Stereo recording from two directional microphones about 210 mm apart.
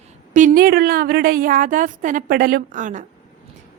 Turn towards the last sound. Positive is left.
turn(degrees=-35)  # may be behind; listen again after turning